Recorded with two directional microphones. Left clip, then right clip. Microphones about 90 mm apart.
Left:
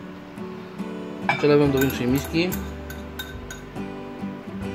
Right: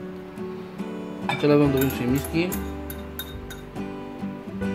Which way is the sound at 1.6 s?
Centre (ahead or behind).